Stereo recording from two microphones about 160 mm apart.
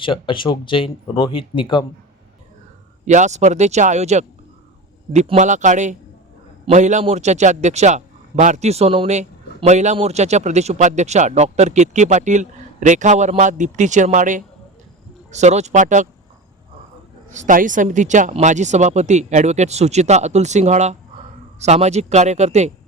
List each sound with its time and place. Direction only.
0.0 s speech: 30° left (ahead or behind)
3.1 s speech: 50° right (ahead or behind)
5.4 s speech: 50° right (ahead or behind)
17.3 s speech: 55° right (ahead or behind)